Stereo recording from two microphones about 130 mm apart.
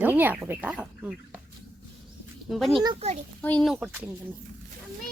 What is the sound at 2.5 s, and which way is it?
A child's voice, centre (ahead or behind).